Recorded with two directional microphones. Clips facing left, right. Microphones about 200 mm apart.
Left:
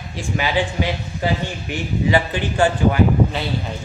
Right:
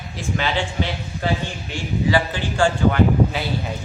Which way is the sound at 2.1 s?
20° left (ahead or behind).